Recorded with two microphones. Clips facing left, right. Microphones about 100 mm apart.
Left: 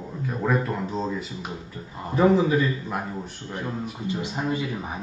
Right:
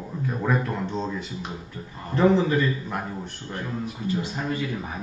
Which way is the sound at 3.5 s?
15° left (ahead or behind).